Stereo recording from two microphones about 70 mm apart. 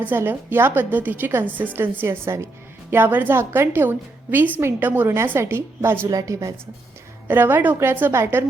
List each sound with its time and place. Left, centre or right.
0.0 s a woman's voice: right
6.1 s a woman's voice: right
7.3 s a woman's voice: right